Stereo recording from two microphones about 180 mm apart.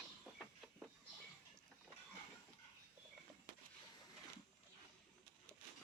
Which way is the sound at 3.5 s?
50° right (ahead or behind).